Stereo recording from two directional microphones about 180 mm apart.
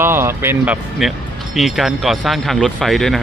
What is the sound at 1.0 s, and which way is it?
Speech, centre (ahead or behind).